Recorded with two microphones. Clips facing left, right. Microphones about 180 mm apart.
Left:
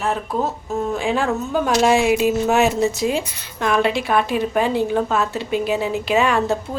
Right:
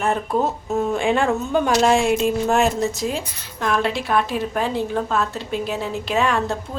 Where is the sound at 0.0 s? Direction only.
Centre (ahead or behind).